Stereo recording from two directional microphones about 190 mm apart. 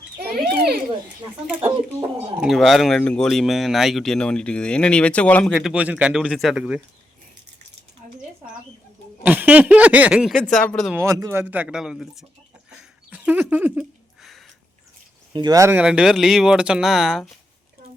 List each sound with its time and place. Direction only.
0.2 s children playing: 55° right (ahead or behind)
2.4 s speech: centre (ahead or behind)
5.7 s speech: 5° right (ahead or behind)
9.2 s speech: 10° right (ahead or behind)
10.9 s speech: 15° right (ahead or behind); by 12.2 s centre (ahead or behind)
12.7 s a sound: 10° right (ahead or behind)
15.3 s speech: 20° right (ahead or behind); by 17.2 s centre (ahead or behind)